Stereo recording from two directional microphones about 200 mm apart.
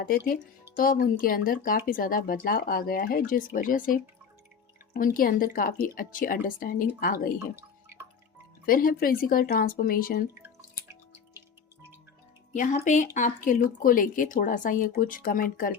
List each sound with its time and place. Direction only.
0.8 s speech: 45° left (ahead or behind)
7.3 s drip: 10° right (ahead or behind)
8.6 s speech: 45° left (ahead or behind)
12.5 s speech: 40° left (ahead or behind)